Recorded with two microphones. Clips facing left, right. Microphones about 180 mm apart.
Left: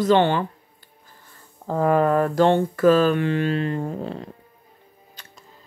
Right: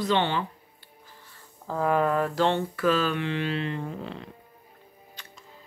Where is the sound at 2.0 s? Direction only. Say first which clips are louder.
Left 6 dB; 45° left (ahead or behind).